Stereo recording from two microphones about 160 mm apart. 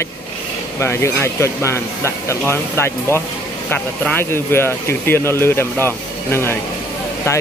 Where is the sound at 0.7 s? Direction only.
15° left (ahead or behind).